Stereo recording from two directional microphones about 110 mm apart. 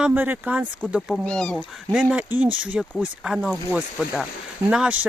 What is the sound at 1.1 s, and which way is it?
Speech, 5° left (ahead or behind).